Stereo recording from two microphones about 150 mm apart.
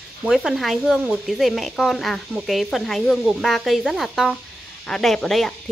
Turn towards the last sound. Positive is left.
turn(degrees=5)  # may be behind; listen again after turning